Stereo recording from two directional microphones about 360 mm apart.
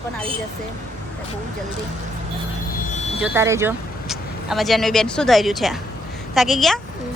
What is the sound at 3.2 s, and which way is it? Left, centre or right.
Speech, centre.